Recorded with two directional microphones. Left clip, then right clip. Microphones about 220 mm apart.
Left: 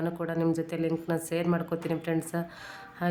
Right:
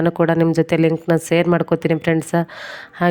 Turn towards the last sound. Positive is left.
turn(degrees=-40)  # may be behind; listen again after turning